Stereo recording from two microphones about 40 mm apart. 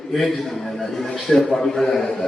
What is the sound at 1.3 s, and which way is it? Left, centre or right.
Speech, centre.